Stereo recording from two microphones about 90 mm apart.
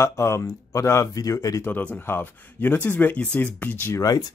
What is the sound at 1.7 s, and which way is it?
Speech, 20° left (ahead or behind).